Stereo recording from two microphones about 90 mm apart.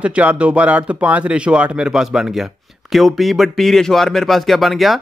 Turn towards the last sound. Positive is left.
turn(degrees=0)  # may be behind; listen again after turning